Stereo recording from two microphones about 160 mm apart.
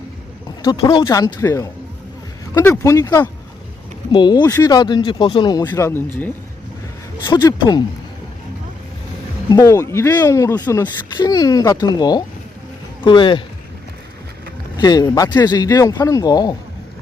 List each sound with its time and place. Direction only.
0.6 s speech: 30° left (ahead or behind)
7.6 s speech: 25° left (ahead or behind)
9.5 s speech: 20° left (ahead or behind)
14.8 s speech: 25° left (ahead or behind)